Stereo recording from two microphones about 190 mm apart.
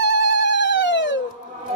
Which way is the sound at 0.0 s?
70° left (ahead or behind).